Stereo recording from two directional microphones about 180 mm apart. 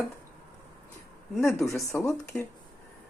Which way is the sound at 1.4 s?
15° left (ahead or behind).